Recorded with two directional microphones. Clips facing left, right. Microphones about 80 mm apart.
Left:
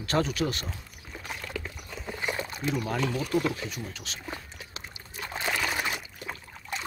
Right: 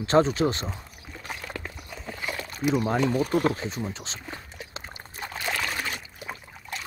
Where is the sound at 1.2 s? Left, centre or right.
Right.